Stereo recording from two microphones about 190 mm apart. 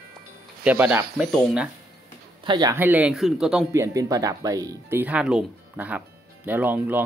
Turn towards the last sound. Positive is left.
turn(degrees=-10)  # may be behind; listen again after turning